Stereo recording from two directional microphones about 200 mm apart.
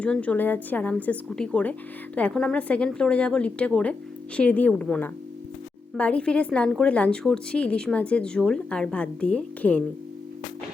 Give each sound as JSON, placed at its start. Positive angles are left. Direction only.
{"t": 0.0, "sound": "a woman's voice", "side_deg": 5}